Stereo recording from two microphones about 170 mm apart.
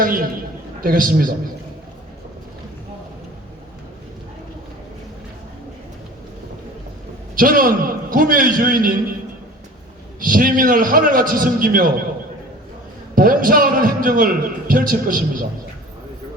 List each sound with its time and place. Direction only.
0.0 s a man's voice: 55° right (ahead or behind)
7.3 s a man's voice: 55° right (ahead or behind)
10.2 s a man's voice: 55° right (ahead or behind)
13.1 s a man's voice: 55° right (ahead or behind)